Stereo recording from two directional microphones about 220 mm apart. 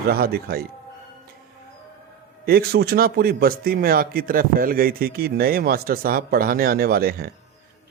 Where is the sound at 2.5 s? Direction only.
45° right (ahead or behind).